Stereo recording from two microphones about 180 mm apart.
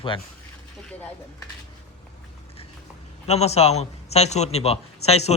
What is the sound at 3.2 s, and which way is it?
A man's voice, 35° left (ahead or behind).